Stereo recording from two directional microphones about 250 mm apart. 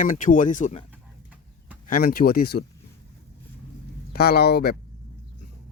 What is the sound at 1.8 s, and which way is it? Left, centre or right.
Speech, left.